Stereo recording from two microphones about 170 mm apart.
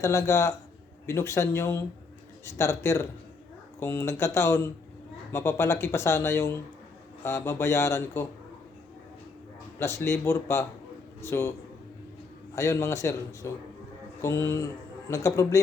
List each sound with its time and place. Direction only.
0.0 s speech: 20° left (ahead or behind)
9.7 s speech: 15° left (ahead or behind)
12.5 s a man's voice: 15° left (ahead or behind)